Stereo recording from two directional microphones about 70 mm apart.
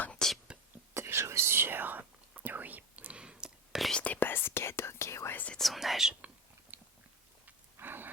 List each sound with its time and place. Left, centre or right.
0.2 s whispering: centre
0.9 s whispering: right; by 3.8 s centre
3.9 s whispering: left
5.3 s whispering: left
5.5 s whispering: centre
6.7 s biting: right
7.4 s a sound: right